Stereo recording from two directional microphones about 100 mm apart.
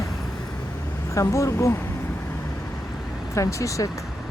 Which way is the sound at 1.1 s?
30° left (ahead or behind).